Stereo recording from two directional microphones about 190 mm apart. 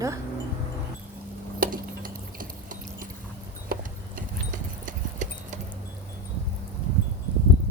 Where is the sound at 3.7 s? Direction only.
45° right (ahead or behind).